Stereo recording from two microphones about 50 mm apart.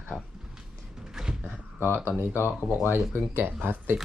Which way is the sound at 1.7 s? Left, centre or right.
Left.